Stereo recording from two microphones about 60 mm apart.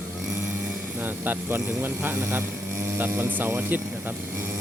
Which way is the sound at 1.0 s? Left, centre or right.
Right.